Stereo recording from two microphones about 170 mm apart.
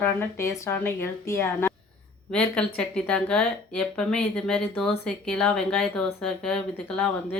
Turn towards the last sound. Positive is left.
turn(degrees=5)  # may be behind; listen again after turning